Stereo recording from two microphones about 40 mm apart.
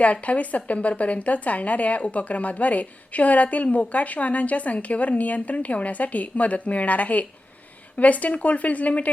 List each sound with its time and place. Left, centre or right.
0.0 s a woman's voice: left